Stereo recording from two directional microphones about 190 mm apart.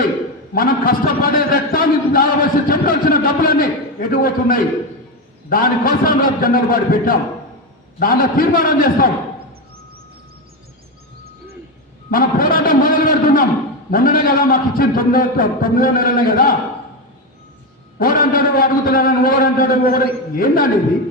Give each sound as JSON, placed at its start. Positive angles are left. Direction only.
{"t": 0.5, "sound": "a man's voice", "side_deg": 50}
{"t": 12.1, "sound": "a man's voice", "side_deg": 45}
{"t": 18.0, "sound": "a man's voice", "side_deg": 50}